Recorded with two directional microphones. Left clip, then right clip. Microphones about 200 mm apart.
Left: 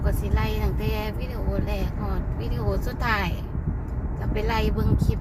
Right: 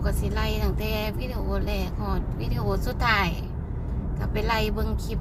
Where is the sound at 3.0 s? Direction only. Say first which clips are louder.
Right 3 dB; 20° right (ahead or behind).